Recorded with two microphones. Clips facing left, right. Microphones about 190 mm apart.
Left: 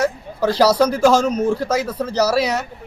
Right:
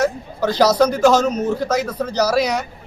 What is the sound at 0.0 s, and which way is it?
A man's voice, 10° left (ahead or behind).